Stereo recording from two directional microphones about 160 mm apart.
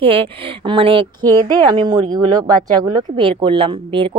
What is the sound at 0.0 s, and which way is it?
A woman's voice, 35° right (ahead or behind).